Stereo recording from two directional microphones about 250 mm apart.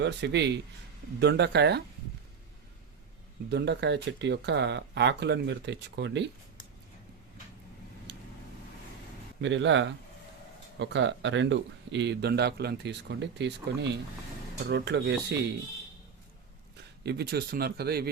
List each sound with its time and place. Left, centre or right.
0.0 s speech: right
3.5 s speech: right
9.4 s speech: right
17.0 s speech: right